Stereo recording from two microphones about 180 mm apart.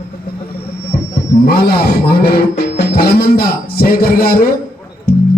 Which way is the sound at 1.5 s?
60° left (ahead or behind).